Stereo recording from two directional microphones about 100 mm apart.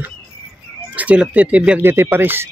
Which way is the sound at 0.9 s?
10° right (ahead or behind).